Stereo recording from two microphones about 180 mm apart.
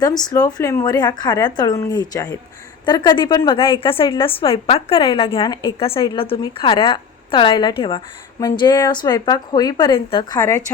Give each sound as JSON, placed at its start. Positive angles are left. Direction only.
{"t": 0.0, "sound": "a woman's voice", "side_deg": 20}